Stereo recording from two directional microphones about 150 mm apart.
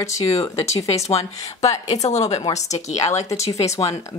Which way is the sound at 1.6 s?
45° left (ahead or behind).